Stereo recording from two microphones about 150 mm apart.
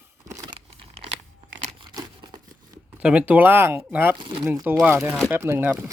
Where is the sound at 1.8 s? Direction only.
25° right (ahead or behind).